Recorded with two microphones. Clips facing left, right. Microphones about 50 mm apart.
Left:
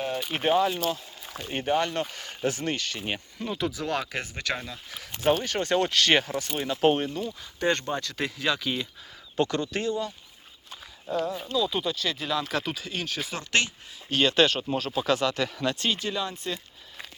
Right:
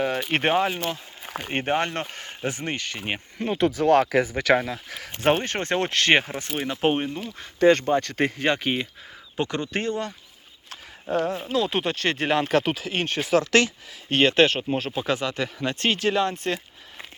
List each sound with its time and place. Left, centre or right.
0.0 s speech: right
0.8 s speech: right
3.3 s speech: right
4.5 s speech: right
5.3 s speech: right
7.3 s speech: right
9.3 s speech: right
9.9 s speech: right
10.7 s horse: right
11.5 s speech: right
14.1 s speech: right
15.9 s speech: right